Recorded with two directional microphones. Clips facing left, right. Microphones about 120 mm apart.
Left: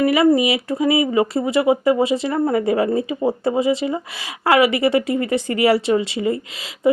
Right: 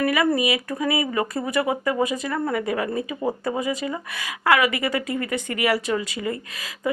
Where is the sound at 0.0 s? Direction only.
25° left (ahead or behind).